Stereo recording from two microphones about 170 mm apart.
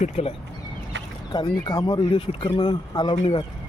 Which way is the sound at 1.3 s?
25° left (ahead or behind).